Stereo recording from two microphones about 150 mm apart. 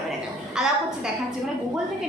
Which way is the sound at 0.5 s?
5° right (ahead or behind).